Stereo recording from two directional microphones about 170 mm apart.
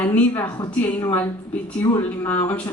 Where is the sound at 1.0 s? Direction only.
10° left (ahead or behind).